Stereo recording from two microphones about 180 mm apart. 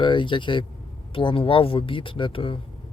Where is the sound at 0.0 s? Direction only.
25° left (ahead or behind).